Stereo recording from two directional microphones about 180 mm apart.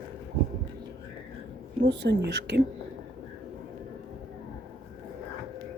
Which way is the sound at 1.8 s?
75° right (ahead or behind).